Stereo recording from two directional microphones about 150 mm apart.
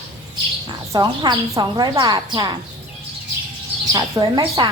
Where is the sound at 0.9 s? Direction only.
30° right (ahead or behind).